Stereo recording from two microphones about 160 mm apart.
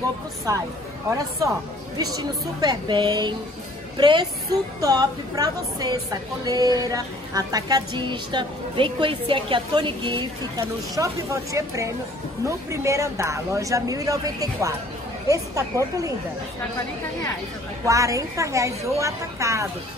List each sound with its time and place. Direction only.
0.5 s a woman's voice: 20° right (ahead or behind)
2.1 s a woman's voice: 25° right (ahead or behind)
11.0 s a woman's voice: 20° right (ahead or behind)
17.8 s a woman's voice: 20° right (ahead or behind)